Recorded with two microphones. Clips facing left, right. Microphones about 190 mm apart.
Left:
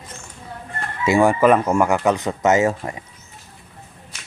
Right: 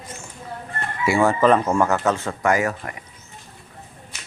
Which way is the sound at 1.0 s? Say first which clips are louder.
Left 2 dB; 15° left (ahead or behind).